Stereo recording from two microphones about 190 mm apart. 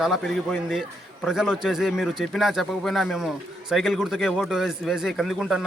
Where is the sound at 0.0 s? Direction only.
Centre (ahead or behind).